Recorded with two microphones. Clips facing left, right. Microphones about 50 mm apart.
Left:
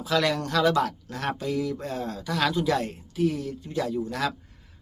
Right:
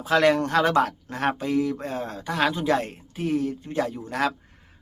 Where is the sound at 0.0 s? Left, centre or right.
Right.